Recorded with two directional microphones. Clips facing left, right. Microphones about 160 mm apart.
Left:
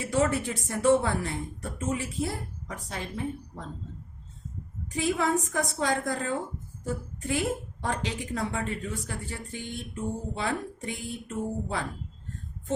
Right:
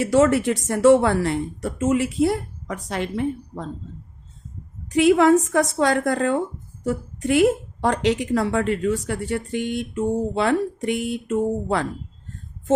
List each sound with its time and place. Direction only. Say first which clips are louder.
0.0 s speech: right 9 dB; 85° right
4.9 s a woman's voice: right 12 dB; 80° right